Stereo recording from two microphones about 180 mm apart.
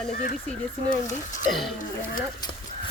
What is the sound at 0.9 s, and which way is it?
Speech, 45° left (ahead or behind).